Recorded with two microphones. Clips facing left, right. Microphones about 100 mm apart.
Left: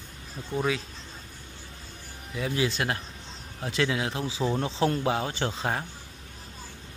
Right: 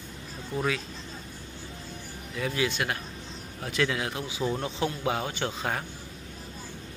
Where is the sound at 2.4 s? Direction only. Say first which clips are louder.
Left 1 dB; 30° left (ahead or behind).